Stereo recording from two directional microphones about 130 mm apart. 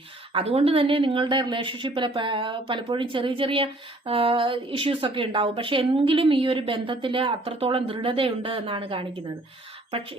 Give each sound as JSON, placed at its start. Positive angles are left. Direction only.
{"t": 0.3, "sound": "speech", "side_deg": -50}